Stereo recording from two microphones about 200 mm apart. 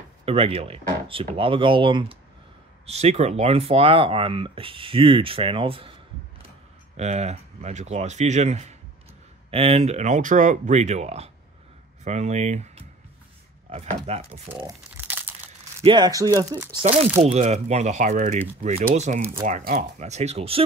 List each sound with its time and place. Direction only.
0.2 s speech: 30° right (ahead or behind)
7.0 s speech: 35° right (ahead or behind)
14.5 s crumpling: 15° right (ahead or behind)
15.8 s speech: 20° right (ahead or behind)
17.2 s speech: 35° right (ahead or behind)